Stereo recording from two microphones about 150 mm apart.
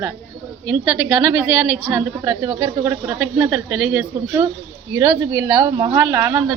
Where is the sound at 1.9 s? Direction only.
25° right (ahead or behind); by 4.0 s 5° right (ahead or behind).